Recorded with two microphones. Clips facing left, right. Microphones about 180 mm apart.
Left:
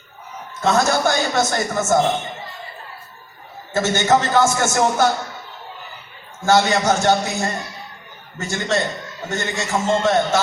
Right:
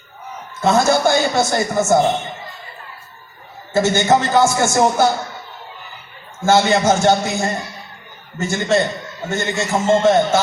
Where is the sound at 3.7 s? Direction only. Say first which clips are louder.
Right 2 dB; 15° right (ahead or behind).